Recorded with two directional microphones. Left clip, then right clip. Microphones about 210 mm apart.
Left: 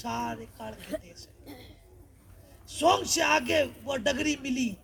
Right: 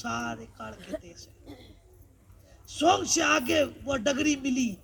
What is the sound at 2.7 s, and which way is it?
A man's voice, 20° left (ahead or behind).